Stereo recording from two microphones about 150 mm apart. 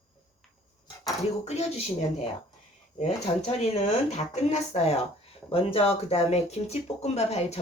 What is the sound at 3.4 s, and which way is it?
Speech, 45° left (ahead or behind).